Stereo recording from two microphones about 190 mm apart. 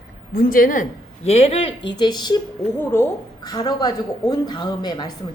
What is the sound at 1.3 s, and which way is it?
A woman's voice, 30° left (ahead or behind).